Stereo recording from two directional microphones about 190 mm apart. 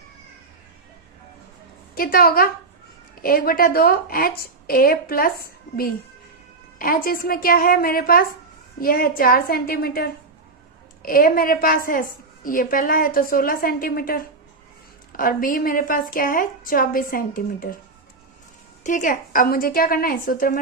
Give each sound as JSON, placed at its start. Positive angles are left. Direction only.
{"t": 2.0, "sound": "a woman's voice", "side_deg": 50}
{"t": 18.8, "sound": "a woman's voice", "side_deg": 40}